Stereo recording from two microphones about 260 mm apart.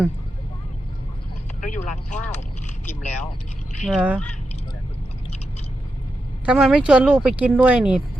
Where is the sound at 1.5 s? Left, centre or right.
Left.